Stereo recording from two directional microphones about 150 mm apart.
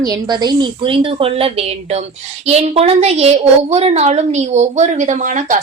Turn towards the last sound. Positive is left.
turn(degrees=-60)  # may be behind; listen again after turning